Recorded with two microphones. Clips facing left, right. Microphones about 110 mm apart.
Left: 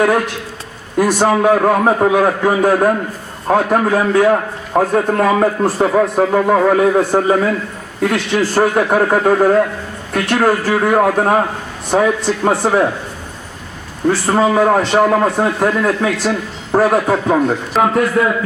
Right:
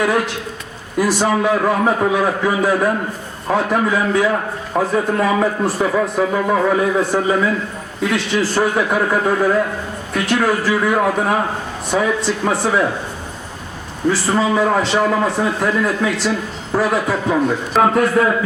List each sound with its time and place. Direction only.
0.9 s a man's voice: 45° left (ahead or behind)
5.6 s a man's voice: 40° left (ahead or behind)
14.1 s a man's voice: 50° left (ahead or behind)
17.7 s a man's voice: centre (ahead or behind)